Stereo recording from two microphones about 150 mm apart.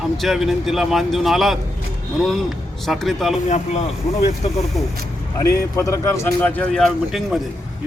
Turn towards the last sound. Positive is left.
turn(degrees=0)  # may be behind; listen again after turning